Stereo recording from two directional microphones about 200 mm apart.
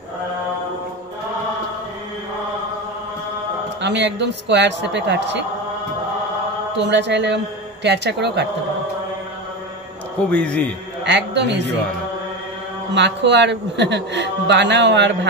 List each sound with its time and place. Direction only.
3.8 s a man's voice: 60° right (ahead or behind)
6.8 s a man's voice: 60° right (ahead or behind)
10.3 s a man's voice: 5° left (ahead or behind)
11.1 s a man's voice: 60° right (ahead or behind)
12.9 s a man's voice: 60° right (ahead or behind)